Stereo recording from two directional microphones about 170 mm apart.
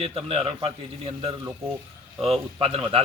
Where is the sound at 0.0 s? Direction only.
35° right (ahead or behind).